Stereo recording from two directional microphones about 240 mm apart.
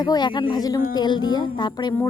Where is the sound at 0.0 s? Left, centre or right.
Centre.